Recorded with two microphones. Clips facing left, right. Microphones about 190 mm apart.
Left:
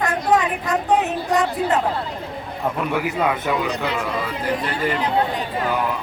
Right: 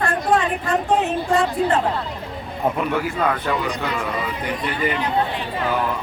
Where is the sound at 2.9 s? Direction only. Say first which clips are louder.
Even; 10° left (ahead or behind).